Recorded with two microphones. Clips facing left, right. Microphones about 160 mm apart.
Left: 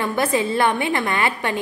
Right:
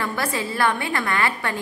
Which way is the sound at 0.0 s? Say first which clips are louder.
Left 5 dB; 20° left (ahead or behind).